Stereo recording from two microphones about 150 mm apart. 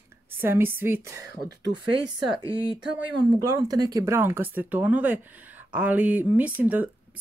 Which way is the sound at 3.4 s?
25° right (ahead or behind).